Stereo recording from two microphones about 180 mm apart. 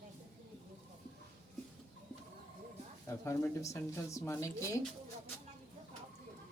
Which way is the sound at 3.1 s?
15° left (ahead or behind).